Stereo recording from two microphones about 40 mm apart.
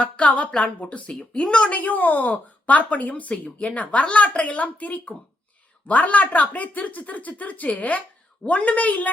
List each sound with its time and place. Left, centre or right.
0.0 s a woman's voice: left
1.7 s speech: left